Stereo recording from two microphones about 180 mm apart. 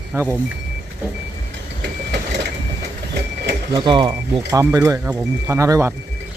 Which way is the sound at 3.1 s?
70° right (ahead or behind).